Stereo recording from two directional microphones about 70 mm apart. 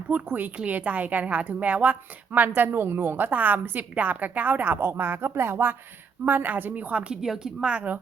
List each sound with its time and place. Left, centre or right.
0.1 s a woman's voice: right